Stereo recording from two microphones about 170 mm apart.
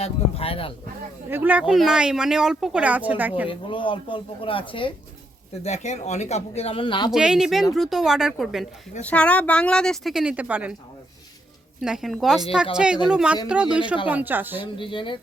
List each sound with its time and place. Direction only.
0.0 s speech: 35° left (ahead or behind)
1.3 s speech: 10° right (ahead or behind)
3.5 s a woman's voice: 30° left (ahead or behind)
5.6 s a man's voice: 40° left (ahead or behind)
7.1 s speech: 5° right (ahead or behind)
9.0 s speech: 10° left (ahead or behind); by 10.8 s 10° right (ahead or behind)
11.8 s a woman's voice: centre (ahead or behind)
14.6 s a woman's voice: 30° left (ahead or behind)